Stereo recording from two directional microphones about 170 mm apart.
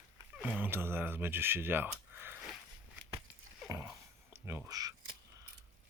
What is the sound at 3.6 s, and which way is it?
Dog, 15° right (ahead or behind).